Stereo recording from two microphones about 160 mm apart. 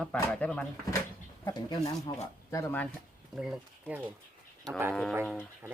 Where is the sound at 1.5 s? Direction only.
25° left (ahead or behind).